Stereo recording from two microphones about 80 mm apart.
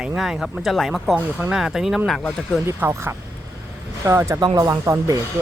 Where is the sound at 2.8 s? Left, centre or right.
Right.